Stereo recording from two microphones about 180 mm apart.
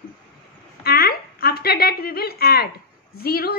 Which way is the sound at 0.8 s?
60° left (ahead or behind).